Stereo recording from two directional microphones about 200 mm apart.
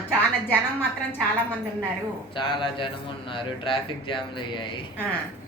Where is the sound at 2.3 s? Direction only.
25° left (ahead or behind).